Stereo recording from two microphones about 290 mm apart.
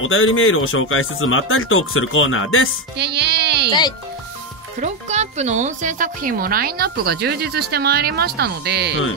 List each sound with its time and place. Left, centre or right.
0.0 s speech: left
3.0 s music: right
4.7 s speech: right